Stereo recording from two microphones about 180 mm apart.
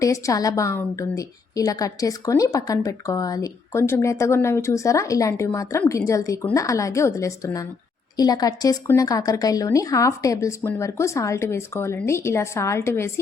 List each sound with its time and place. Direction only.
0.0 s a woman's voice: 20° left (ahead or behind)